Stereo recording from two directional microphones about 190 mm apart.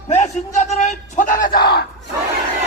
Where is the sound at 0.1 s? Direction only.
40° left (ahead or behind).